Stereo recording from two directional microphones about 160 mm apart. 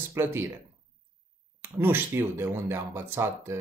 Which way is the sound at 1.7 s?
15° right (ahead or behind).